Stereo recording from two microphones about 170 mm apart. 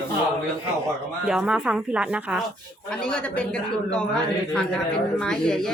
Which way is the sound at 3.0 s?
5° left (ahead or behind).